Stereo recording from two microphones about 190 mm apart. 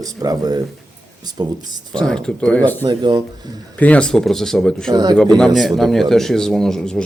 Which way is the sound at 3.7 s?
5° left (ahead or behind).